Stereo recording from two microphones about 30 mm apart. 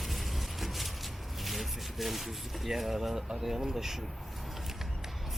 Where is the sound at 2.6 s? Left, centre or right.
Centre.